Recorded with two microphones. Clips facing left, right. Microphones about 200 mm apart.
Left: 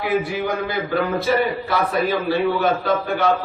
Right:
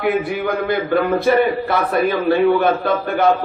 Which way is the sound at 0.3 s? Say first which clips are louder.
Right 4 dB; 55° right (ahead or behind).